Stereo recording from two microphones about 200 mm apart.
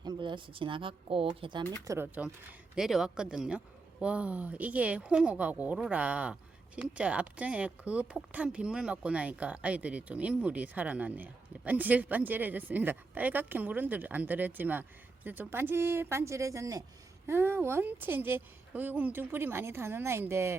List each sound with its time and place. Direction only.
0.0 s speech: 20° right (ahead or behind)
1.9 s speech: 10° right (ahead or behind)